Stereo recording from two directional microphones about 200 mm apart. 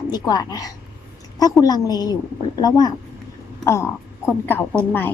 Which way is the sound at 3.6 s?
15° left (ahead or behind).